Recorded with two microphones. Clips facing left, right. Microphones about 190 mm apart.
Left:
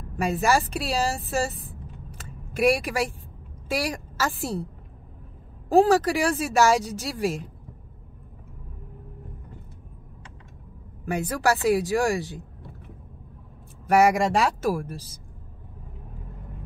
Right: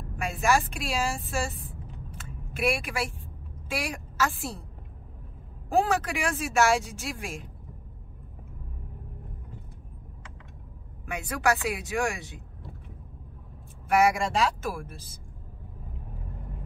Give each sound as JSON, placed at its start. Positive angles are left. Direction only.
{"t": 0.2, "sound": "speech", "side_deg": 35}
{"t": 2.1, "sound": "a sound", "side_deg": 40}
{"t": 3.6, "sound": "a woman's voice", "side_deg": 35}
{"t": 5.7, "sound": "speech", "side_deg": 35}
{"t": 11.1, "sound": "speech", "side_deg": 35}
{"t": 13.8, "sound": "speech", "side_deg": 40}